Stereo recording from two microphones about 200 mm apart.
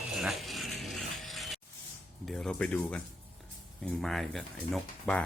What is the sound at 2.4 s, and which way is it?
Speech, 5° left (ahead or behind).